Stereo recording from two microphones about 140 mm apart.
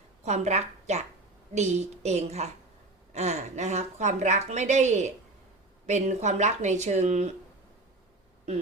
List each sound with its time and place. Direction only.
0.3 s a woman's voice: 55° right (ahead or behind)